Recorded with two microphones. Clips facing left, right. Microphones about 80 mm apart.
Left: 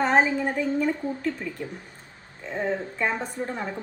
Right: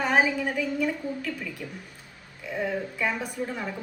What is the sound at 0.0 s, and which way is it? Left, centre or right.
A woman's voice, left.